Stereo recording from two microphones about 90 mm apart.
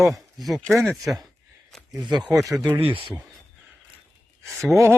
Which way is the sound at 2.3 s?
40° right (ahead or behind).